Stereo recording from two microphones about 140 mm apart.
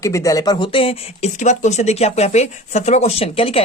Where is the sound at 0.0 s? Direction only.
20° left (ahead or behind); by 1.3 s 40° left (ahead or behind).